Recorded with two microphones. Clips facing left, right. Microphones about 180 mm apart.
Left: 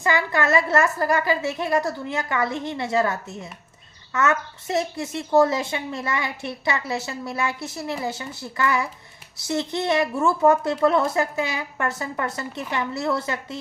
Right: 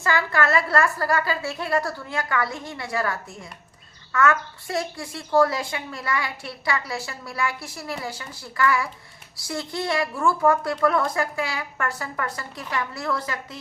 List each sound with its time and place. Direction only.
0.0 s a woman's voice: 20° left (ahead or behind)